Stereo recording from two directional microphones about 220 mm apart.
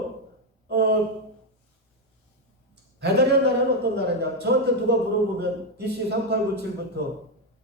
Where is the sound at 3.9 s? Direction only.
50° right (ahead or behind).